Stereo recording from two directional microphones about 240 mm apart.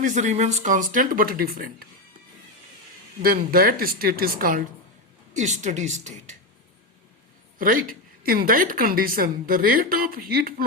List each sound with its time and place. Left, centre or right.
0.0 s a woman's voice: right
3.2 s a woman's voice: right
7.6 s a woman's voice: right